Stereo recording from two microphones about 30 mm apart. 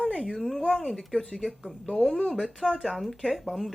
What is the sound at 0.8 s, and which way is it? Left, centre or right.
Speech, centre.